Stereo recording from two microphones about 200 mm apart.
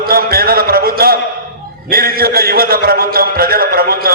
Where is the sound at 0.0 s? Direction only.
50° right (ahead or behind).